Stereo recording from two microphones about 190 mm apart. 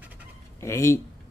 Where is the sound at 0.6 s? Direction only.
15° left (ahead or behind).